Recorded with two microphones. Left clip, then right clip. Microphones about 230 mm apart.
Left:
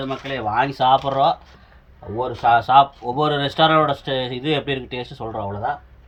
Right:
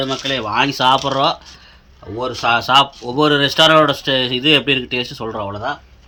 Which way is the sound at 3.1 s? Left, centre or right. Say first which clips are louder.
Right 6 dB; centre.